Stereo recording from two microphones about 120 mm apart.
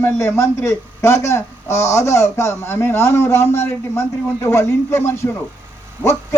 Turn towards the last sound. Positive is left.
turn(degrees=20)  # may be behind; listen again after turning